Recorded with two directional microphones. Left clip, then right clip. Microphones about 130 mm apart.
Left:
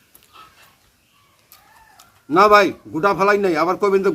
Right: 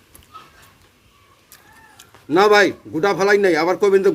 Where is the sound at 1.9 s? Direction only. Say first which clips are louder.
Left 1 dB; 20° left (ahead or behind).